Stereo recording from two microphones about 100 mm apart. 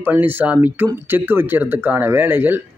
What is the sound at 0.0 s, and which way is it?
A man's voice, 20° right (ahead or behind).